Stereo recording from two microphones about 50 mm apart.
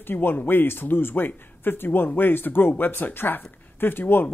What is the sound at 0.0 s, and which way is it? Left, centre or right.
Speech, left.